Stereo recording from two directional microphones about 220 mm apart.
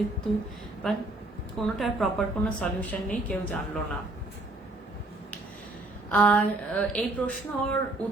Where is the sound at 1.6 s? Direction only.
Centre (ahead or behind).